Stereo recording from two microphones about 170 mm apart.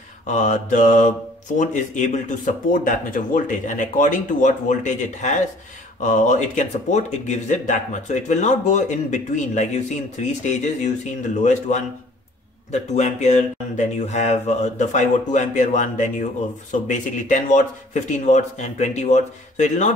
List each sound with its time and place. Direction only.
0.3 s speech: 45° left (ahead or behind)